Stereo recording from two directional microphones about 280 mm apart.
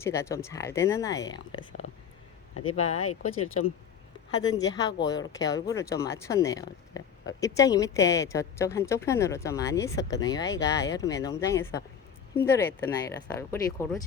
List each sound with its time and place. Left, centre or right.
0.0 s speech: centre
2.8 s speech: left
4.4 s speech: centre